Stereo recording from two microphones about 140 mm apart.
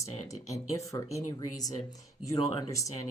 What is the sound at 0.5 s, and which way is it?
Speech, 25° left (ahead or behind).